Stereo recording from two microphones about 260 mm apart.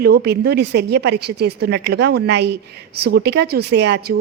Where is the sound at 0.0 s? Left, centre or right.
Right.